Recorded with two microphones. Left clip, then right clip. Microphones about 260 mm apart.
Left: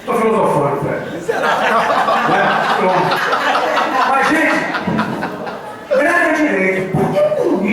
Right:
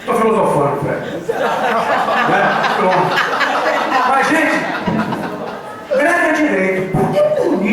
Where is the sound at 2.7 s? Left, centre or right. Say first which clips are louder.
Right 1 dB; centre.